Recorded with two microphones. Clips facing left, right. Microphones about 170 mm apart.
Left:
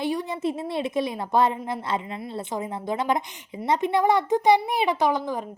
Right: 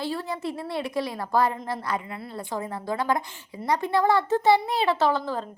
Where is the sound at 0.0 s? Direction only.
15° left (ahead or behind).